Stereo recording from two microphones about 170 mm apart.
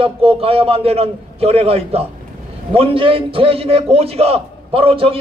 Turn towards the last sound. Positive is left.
turn(degrees=-35)  # may be behind; listen again after turning